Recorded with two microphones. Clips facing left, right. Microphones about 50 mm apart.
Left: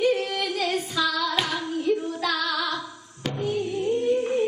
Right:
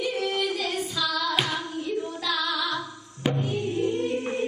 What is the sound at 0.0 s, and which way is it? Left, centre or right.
Female singing, left.